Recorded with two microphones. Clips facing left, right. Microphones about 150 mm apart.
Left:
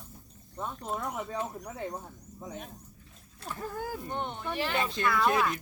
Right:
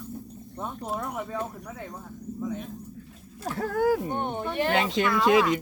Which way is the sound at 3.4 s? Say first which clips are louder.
Right 12 dB; 85° right.